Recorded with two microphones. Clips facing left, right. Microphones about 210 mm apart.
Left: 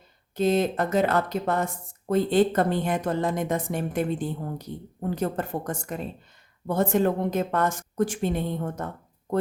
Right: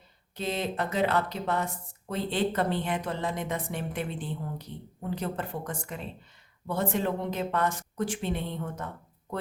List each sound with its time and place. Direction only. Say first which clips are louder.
0.3 s speech: left 8 dB; 45° left (ahead or behind)